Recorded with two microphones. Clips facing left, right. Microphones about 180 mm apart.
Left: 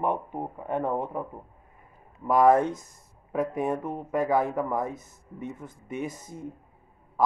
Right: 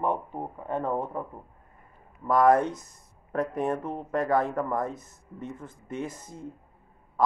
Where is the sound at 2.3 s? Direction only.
10° left (ahead or behind).